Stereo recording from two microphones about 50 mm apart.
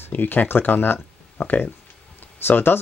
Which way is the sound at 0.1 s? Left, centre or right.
Left.